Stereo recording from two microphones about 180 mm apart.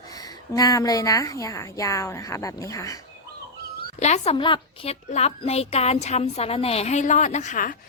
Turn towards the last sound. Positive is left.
turn(degrees=45)  # may be behind; listen again after turning